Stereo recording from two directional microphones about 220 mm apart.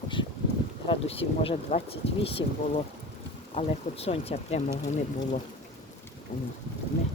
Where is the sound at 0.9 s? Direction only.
25° left (ahead or behind).